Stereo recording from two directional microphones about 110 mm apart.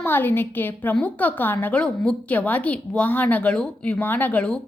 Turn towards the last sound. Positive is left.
turn(degrees=10)  # may be behind; listen again after turning